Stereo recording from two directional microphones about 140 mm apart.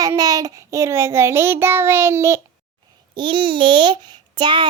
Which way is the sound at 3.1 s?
35° right (ahead or behind).